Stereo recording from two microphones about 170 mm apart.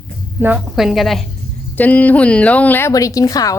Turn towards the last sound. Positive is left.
turn(degrees=20)  # may be behind; listen again after turning